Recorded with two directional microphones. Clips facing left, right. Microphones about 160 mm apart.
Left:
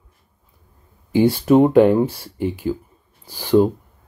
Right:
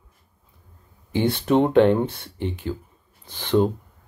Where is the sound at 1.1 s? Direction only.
5° left (ahead or behind).